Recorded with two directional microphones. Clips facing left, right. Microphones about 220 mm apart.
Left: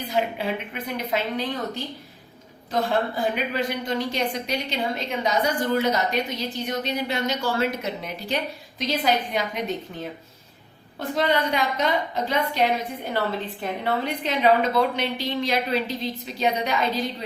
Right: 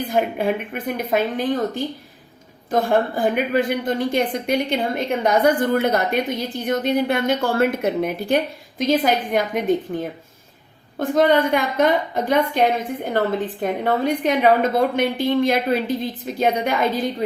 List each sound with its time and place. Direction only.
0.0 s a woman's voice: 50° right (ahead or behind)